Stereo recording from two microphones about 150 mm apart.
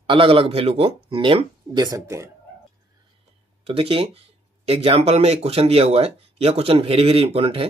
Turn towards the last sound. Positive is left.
turn(degrees=-40)  # may be behind; listen again after turning